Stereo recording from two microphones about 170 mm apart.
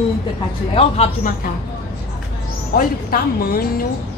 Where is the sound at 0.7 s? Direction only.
35° left (ahead or behind).